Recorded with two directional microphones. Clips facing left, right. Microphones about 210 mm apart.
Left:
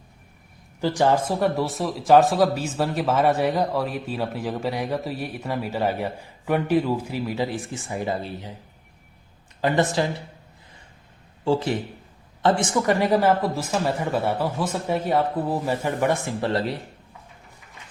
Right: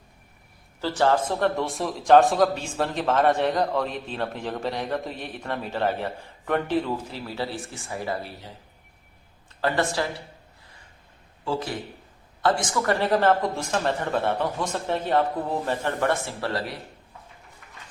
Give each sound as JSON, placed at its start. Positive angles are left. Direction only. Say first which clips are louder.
{"t": 0.8, "sound": "a man's voice", "louder": "left 2 dB", "side_deg": 15}
{"t": 9.6, "sound": "speech", "louder": "left 3 dB", "side_deg": 20}
{"t": 11.4, "sound": "a man's voice", "louder": "left 6 dB", "side_deg": 30}